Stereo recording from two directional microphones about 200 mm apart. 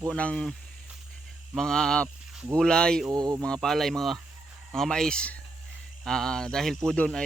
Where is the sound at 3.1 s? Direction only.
20° right (ahead or behind).